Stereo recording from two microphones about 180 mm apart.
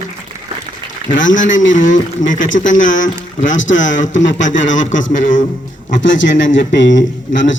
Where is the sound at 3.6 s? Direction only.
90° left.